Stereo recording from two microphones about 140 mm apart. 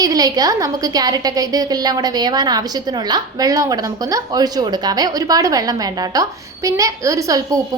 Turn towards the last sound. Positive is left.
turn(degrees=-25)  # may be behind; listen again after turning